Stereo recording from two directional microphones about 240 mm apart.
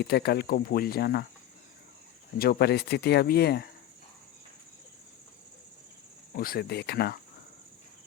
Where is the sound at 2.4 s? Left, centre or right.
Left.